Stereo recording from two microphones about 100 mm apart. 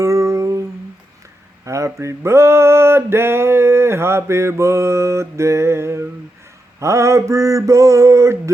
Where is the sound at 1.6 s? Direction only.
30° right (ahead or behind).